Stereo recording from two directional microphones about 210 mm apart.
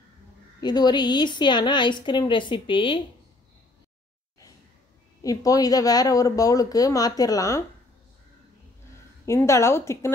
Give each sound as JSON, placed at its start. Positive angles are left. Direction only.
{"t": 0.6, "sound": "a woman's voice", "side_deg": 20}
{"t": 5.2, "sound": "speech", "side_deg": 15}
{"t": 9.2, "sound": "speech", "side_deg": 15}